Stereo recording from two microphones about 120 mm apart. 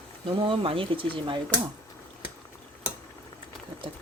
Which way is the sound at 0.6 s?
50° right (ahead or behind).